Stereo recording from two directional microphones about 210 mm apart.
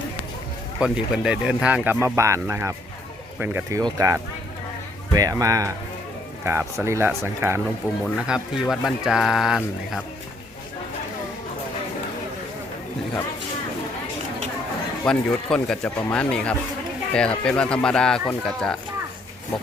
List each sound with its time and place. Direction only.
0.8 s speech: 5° right (ahead or behind)
8.0 s speech: 5° left (ahead or behind)
15.0 s speech: 5° left (ahead or behind)